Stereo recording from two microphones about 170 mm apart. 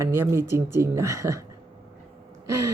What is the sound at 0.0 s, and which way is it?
Speech, 15° right (ahead or behind).